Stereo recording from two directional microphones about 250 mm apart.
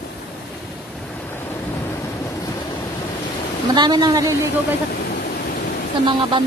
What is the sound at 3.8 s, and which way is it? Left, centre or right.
Speech, centre.